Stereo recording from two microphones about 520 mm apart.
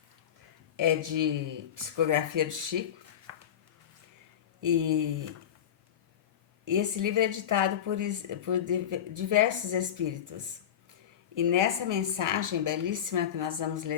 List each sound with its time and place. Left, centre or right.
0.8 s speech: right
3.3 s a sound: right
4.6 s speech: right
6.7 s speech: right